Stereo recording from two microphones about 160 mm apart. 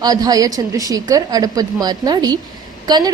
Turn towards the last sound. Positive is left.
turn(degrees=-25)  # may be behind; listen again after turning